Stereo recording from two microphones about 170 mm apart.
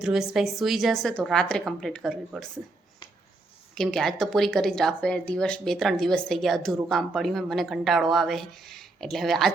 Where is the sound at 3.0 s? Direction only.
25° left (ahead or behind).